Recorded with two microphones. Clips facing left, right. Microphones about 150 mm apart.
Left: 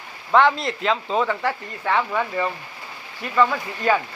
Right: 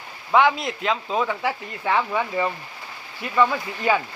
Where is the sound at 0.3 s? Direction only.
5° right (ahead or behind).